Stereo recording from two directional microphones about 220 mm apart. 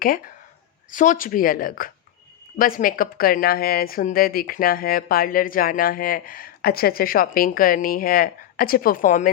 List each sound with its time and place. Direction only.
0.9 s speech: 35° left (ahead or behind)